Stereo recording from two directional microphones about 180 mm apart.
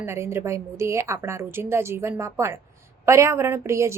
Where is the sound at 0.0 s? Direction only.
15° right (ahead or behind).